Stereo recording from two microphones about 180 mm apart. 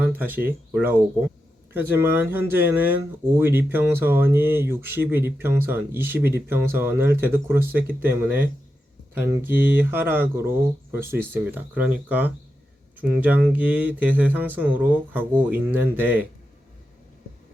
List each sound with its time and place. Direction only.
0.0 s speech: 10° right (ahead or behind)